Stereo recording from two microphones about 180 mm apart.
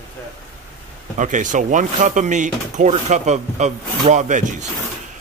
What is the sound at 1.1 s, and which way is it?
Speech, 45° right (ahead or behind).